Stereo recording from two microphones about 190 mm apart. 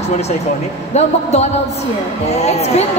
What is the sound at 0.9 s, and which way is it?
A woman's voice, 35° left (ahead or behind).